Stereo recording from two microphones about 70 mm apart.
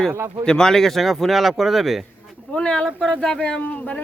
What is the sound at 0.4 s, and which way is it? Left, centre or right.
A man's voice, centre.